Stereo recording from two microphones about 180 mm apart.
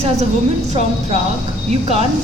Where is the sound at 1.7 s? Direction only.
35° right (ahead or behind).